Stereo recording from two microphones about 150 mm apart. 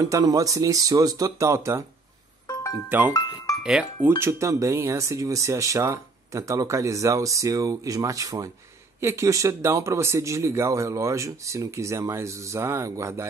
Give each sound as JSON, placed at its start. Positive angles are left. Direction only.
{"t": 0.0, "sound": "speech", "side_deg": -25}
{"t": 2.9, "sound": "speech", "side_deg": -15}
{"t": 4.2, "sound": "speech", "side_deg": -15}